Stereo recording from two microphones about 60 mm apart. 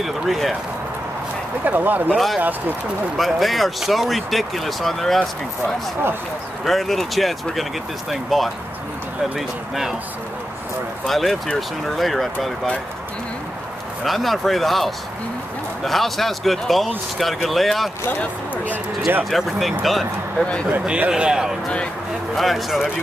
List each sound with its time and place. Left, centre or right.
0.0 s speech: centre
1.6 s speech: right
2.1 s speech: centre
6.6 s speech: centre
11.1 s speech: centre
14.0 s speech: centre
18.2 s speech: left
19.3 s speech: centre
21.1 s a man's voice: centre
22.3 s speech: centre